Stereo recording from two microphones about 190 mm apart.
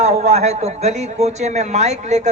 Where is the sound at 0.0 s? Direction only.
35° right (ahead or behind).